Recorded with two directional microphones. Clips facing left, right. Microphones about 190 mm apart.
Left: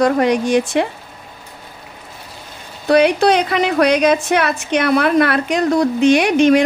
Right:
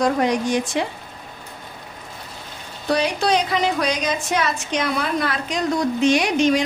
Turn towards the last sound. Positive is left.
turn(degrees=60)  # may be behind; listen again after turning